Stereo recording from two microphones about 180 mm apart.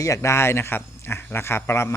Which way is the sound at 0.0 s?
15° left (ahead or behind).